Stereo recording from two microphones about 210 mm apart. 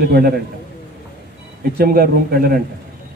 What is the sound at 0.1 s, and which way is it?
Speech, 45° right (ahead or behind).